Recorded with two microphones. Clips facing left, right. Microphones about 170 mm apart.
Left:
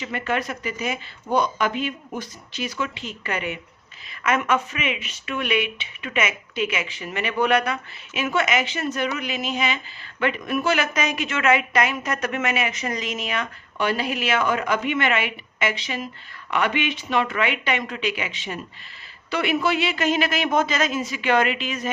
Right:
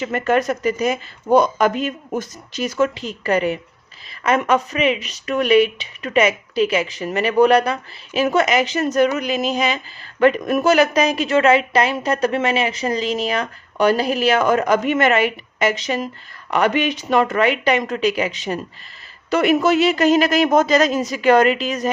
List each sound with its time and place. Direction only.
0.0 s speech: 45° right (ahead or behind)